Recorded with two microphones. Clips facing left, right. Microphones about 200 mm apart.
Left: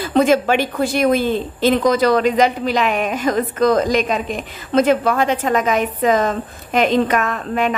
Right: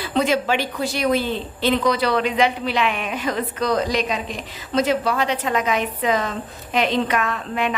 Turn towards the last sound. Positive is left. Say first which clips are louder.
# left 4 dB
turn(degrees=45)  # may be behind; listen again after turning